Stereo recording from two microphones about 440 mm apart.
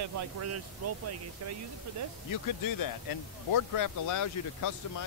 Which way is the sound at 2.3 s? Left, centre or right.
Left.